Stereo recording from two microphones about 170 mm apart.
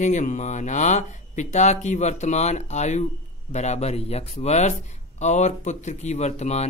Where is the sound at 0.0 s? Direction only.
45° left (ahead or behind).